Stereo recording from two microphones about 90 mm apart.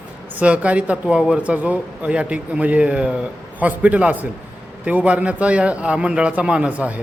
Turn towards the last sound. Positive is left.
turn(degrees=-15)  # may be behind; listen again after turning